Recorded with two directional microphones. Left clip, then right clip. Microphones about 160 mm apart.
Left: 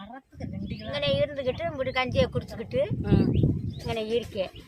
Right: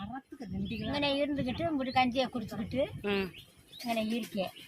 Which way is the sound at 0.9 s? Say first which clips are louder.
Left 5 dB; 15° left (ahead or behind).